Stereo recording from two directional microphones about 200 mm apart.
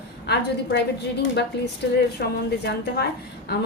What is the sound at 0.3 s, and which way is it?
A woman's voice, 55° left (ahead or behind).